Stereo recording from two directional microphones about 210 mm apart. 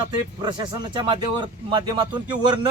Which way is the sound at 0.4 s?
20° right (ahead or behind).